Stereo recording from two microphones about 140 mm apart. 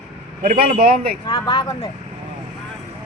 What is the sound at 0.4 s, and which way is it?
Speech, 85° right.